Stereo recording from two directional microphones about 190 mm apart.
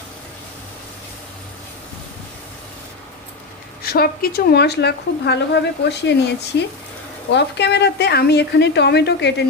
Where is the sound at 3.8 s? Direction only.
55° left (ahead or behind).